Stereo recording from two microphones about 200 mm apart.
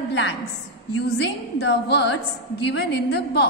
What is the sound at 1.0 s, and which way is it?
A woman's voice, 55° left (ahead or behind).